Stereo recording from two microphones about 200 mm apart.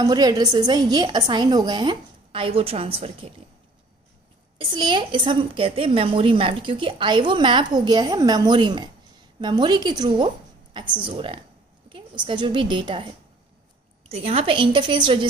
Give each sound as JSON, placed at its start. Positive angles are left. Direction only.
{"t": 0.0, "sound": "a woman's voice", "side_deg": -20}
{"t": 4.6, "sound": "a woman's voice", "side_deg": -25}